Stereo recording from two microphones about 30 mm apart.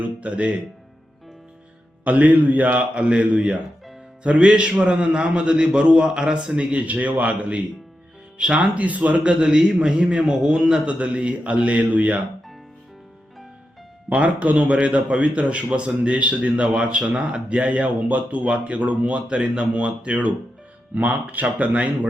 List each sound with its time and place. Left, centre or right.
0.2 s a man's voice: right
2.0 s a man's voice: right
2.9 s a man's voice: right
9.2 s a man's voice: right
10.4 s a man's voice: right
10.8 s a man's voice: right
14.1 s a man's voice: right
17.7 s a man's voice: right
20.9 s a man's voice: right